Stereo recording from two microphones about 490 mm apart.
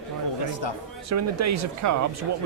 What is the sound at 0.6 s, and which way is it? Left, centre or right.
Speech, left.